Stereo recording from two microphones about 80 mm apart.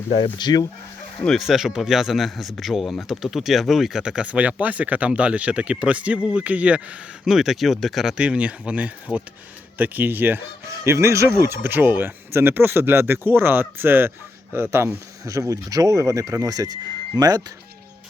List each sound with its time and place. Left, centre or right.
0.3 s speech: left
1.4 s speech: centre
7.3 s speech: centre; by 14.8 s right
15.2 s speech: right